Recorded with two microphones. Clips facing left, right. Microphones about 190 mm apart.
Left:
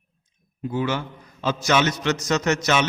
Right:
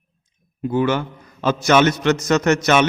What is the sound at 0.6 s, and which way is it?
A man's voice, 55° right (ahead or behind).